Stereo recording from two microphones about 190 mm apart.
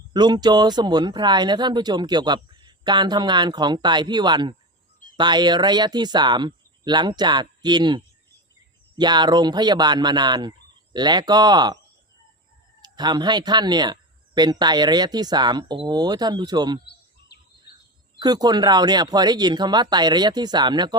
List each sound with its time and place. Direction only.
0.1 s speech: 20° right (ahead or behind)
12.8 s speech: 20° right (ahead or behind)
16.8 s a sound: 60° left (ahead or behind)
18.2 s speech: 20° right (ahead or behind)